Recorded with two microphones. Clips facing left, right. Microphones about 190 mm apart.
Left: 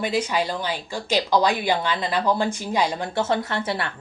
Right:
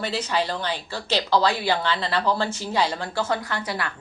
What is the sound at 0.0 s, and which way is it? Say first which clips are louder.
Speech: left 2 dB; 10° left (ahead or behind).